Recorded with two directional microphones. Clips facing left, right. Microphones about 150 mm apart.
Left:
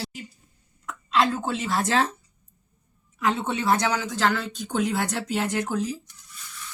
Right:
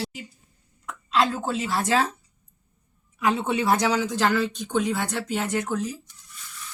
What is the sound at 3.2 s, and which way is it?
Speech, 10° right (ahead or behind).